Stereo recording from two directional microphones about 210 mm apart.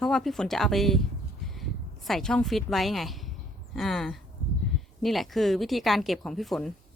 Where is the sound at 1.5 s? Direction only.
Centre (ahead or behind).